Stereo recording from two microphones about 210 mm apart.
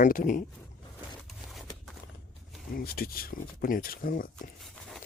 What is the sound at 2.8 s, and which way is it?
Speech, 45° left (ahead or behind).